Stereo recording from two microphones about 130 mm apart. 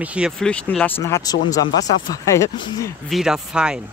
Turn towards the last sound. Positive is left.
turn(degrees=-5)  # may be behind; listen again after turning